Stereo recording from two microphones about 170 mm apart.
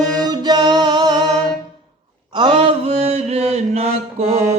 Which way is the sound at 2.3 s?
30° right (ahead or behind).